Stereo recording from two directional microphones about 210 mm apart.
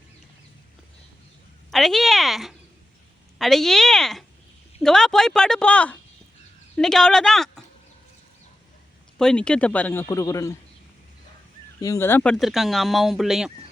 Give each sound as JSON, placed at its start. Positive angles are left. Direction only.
{"t": 1.7, "sound": "speech", "side_deg": 0}
{"t": 9.1, "sound": "a man's voice", "side_deg": 5}
{"t": 11.8, "sound": "speech", "side_deg": 15}